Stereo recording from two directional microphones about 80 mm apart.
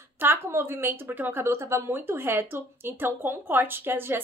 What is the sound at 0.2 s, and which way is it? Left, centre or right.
A woman's voice, right.